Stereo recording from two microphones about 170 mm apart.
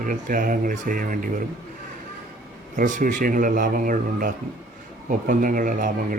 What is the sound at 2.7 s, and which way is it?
Speech, 50° right (ahead or behind).